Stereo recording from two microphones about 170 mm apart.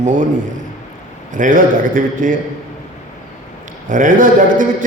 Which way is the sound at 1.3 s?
50° right (ahead or behind).